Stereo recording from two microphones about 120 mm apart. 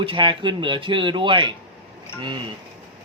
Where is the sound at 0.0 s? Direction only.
45° right (ahead or behind).